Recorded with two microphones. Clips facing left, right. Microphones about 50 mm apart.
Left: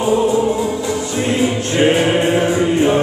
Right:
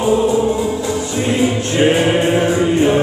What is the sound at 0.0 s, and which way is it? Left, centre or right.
Music, centre.